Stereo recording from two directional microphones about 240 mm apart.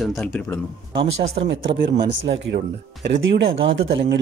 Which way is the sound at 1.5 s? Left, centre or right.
Right.